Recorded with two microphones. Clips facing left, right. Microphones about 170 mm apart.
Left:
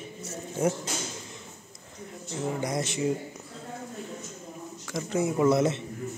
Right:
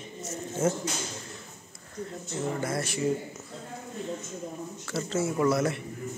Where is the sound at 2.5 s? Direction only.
15° left (ahead or behind).